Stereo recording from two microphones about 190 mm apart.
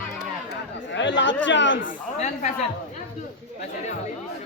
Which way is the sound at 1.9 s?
40° left (ahead or behind).